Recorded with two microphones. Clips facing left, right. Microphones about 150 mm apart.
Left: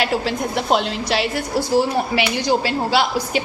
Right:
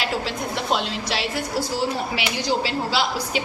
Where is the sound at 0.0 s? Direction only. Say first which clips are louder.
Left 5 dB; 55° left (ahead or behind).